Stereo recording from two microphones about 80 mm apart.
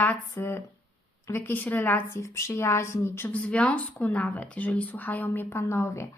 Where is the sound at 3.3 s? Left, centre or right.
Centre.